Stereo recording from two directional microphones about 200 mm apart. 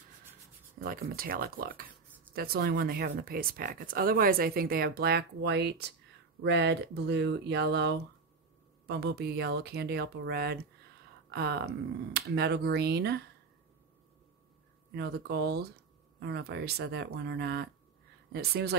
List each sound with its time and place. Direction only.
0.7 s speech: 45° right (ahead or behind)
15.0 s speech: 55° right (ahead or behind)